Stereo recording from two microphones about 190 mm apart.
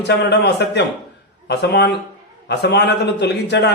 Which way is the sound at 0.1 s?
60° left (ahead or behind).